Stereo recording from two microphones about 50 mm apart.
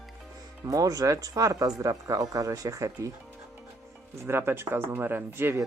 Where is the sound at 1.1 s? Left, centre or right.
Right.